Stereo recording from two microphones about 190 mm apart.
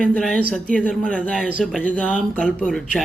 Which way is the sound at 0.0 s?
5° left (ahead or behind).